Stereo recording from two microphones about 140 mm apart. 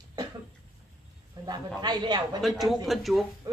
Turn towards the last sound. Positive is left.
turn(degrees=0)  # may be behind; listen again after turning